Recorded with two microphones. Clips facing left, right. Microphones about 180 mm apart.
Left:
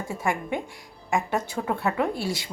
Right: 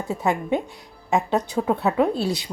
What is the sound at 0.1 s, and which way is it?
A woman's voice, 20° right (ahead or behind).